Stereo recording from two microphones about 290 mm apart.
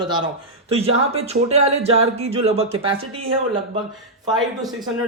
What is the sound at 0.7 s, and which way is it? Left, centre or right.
Speech, right.